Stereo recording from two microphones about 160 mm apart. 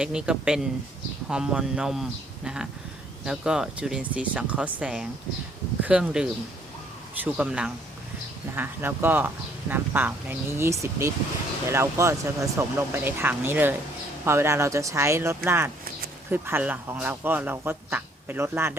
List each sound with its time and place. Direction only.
0.0 s speech: 5° right (ahead or behind)
7.3 s a man's voice: 10° right (ahead or behind)